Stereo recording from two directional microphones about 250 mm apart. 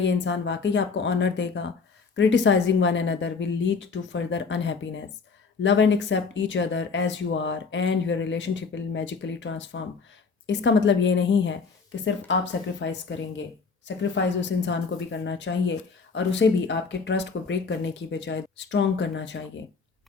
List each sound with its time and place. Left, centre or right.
0.0 s a woman's voice: left